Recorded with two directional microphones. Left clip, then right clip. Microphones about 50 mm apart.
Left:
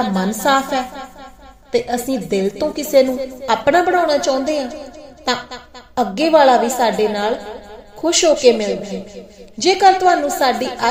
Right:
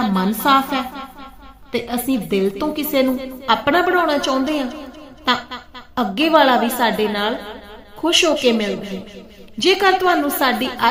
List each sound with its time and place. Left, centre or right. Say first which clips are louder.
0.0 s a woman's voice: left 1 dB; left
3.8 s a man's voice: left 2 dB; centre